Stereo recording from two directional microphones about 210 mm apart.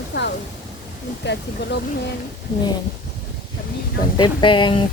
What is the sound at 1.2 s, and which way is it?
Speech, 55° left (ahead or behind).